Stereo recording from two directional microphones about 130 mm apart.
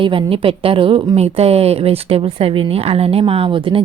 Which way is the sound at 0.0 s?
40° right (ahead or behind).